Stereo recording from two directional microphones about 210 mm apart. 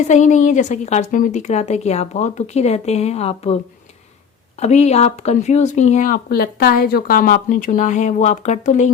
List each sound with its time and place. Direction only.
0.1 s speech: 35° left (ahead or behind)
4.6 s speech: 30° left (ahead or behind)